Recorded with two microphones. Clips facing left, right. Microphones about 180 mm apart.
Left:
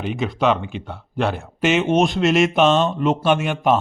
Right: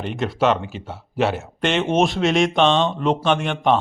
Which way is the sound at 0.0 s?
Centre (ahead or behind).